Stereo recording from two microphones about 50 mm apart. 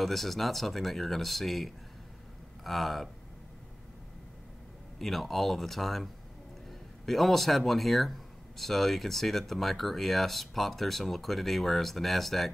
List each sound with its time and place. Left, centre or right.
0.0 s speech: centre
4.9 s speech: centre
7.1 s speech: centre